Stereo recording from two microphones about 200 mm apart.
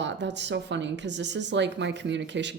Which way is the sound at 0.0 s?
60° right (ahead or behind).